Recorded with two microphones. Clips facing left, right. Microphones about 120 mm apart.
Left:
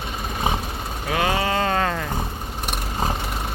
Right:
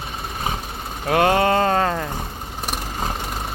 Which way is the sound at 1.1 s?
50° right (ahead or behind).